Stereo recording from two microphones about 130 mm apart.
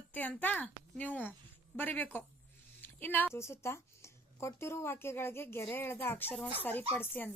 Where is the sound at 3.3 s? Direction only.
20° left (ahead or behind).